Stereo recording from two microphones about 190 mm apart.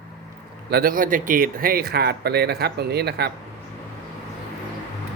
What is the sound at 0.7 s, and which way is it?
Speech, 50° right (ahead or behind).